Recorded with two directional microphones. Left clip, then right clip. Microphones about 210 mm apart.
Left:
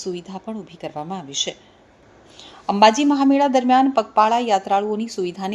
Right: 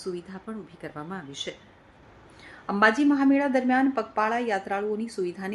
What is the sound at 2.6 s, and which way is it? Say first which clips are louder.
A woman's voice: left 7 dB; 15° left (ahead or behind).